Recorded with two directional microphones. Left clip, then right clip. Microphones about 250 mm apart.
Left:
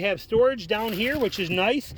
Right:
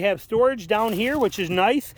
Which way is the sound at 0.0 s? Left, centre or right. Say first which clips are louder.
Right 1 dB; centre.